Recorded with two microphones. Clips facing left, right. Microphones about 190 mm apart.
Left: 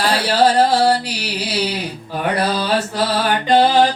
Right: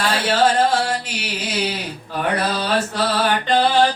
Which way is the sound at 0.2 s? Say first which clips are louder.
Left 2 dB; 35° left (ahead or behind).